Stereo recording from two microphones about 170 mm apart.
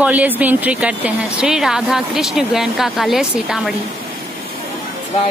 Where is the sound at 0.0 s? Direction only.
10° right (ahead or behind).